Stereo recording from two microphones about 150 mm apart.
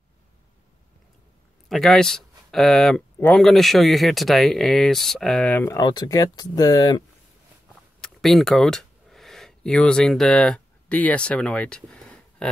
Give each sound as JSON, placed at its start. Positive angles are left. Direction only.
{"t": 1.7, "sound": "speech", "side_deg": 0}
{"t": 5.8, "sound": "speech", "side_deg": 25}
{"t": 8.0, "sound": "a sound", "side_deg": 0}